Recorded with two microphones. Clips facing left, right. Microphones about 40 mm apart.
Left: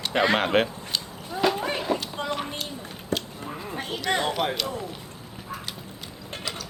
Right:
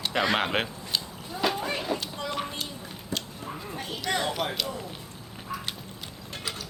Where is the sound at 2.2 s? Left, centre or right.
Left.